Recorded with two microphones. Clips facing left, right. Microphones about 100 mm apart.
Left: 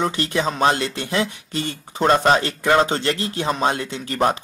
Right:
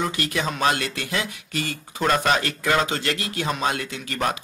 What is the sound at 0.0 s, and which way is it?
Speech, 30° left (ahead or behind).